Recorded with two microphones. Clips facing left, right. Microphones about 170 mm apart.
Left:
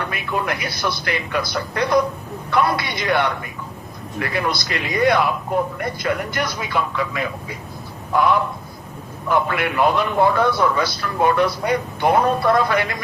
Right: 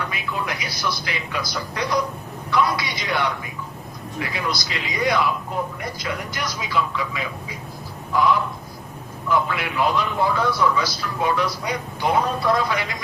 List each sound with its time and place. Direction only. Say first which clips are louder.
0.0 s a man's voice: left 4 dB; 55° left (ahead or behind)